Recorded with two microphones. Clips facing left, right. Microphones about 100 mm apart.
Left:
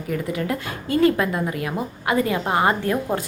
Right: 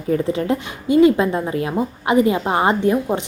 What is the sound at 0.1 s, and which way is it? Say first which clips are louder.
A woman's voice: right 6 dB; 30° right (ahead or behind).